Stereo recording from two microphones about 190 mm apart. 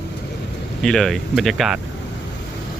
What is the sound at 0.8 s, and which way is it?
Speech, centre (ahead or behind).